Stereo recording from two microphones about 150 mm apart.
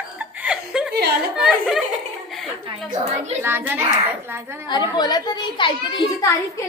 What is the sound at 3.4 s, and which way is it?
Speech, 15° right (ahead or behind).